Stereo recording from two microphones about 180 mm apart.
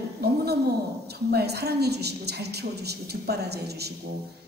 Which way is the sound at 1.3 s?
60° right (ahead or behind).